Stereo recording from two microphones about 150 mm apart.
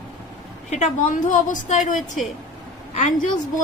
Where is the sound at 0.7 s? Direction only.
55° left (ahead or behind).